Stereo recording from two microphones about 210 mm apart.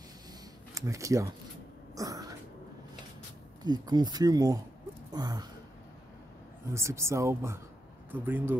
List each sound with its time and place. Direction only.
0.7 s speech: 15° right (ahead or behind)
2.0 s throat clearing: 15° right (ahead or behind)
3.6 s speech: 20° right (ahead or behind)
6.7 s speech: 15° right (ahead or behind)